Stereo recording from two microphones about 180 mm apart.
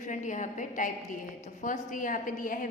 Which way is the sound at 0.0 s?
45° left (ahead or behind).